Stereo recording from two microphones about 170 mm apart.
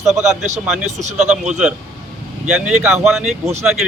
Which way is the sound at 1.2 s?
5° right (ahead or behind).